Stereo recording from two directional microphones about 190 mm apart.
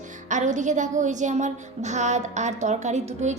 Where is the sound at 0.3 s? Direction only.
40° right (ahead or behind).